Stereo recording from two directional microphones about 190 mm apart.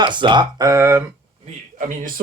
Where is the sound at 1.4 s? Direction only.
40° right (ahead or behind).